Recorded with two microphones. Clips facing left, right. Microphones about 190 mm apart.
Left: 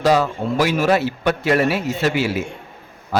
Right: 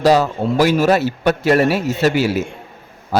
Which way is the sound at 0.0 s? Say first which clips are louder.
Right 3 dB; 40° right (ahead or behind).